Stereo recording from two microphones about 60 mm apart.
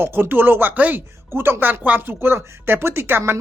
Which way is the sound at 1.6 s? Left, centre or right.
Right.